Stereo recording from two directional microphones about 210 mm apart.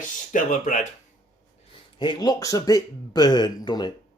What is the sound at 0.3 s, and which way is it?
Speech, 35° left (ahead or behind).